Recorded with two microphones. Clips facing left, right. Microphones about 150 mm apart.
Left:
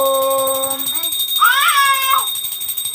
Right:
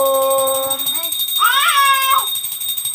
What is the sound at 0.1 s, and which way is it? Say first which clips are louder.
Music: right 1 dB; 5° right (ahead or behind).